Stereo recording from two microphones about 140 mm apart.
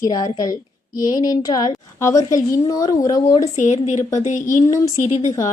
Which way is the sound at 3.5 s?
60° left (ahead or behind).